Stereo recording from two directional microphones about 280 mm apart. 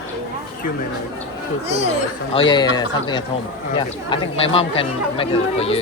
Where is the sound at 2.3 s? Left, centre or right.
Centre.